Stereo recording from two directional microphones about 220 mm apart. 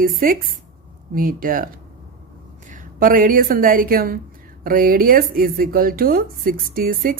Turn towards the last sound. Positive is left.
turn(degrees=-40)  # may be behind; listen again after turning